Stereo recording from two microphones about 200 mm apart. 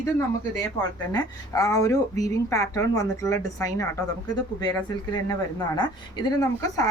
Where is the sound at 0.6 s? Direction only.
20° left (ahead or behind).